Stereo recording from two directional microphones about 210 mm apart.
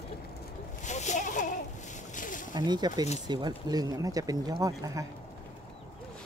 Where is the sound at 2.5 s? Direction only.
20° right (ahead or behind).